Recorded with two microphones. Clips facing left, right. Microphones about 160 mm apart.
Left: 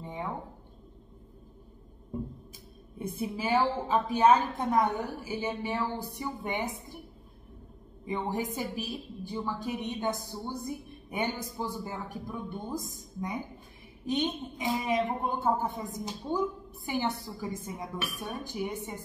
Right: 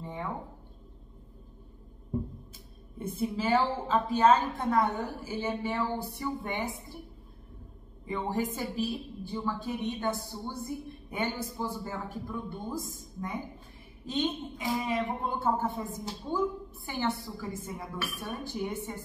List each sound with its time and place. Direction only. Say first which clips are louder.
0.0 s speech: even; 15° left (ahead or behind)
3.0 s a woman's voice: right 2 dB; 15° left (ahead or behind)
8.1 s a woman's voice: right 1 dB; 15° left (ahead or behind)